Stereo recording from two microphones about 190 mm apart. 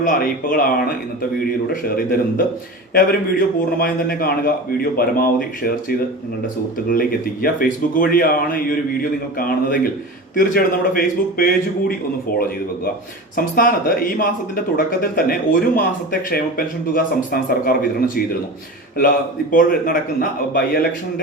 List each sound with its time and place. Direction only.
0.0 s a man's voice: 45° left (ahead or behind)
1.7 s a man's voice: 50° left (ahead or behind)
6.9 s a man's voice: 50° left (ahead or behind)
13.3 s a man's voice: 50° left (ahead or behind)
16.9 s a man's voice: 45° left (ahead or behind)